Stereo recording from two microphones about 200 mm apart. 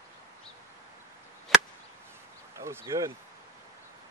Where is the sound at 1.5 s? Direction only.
Centre (ahead or behind).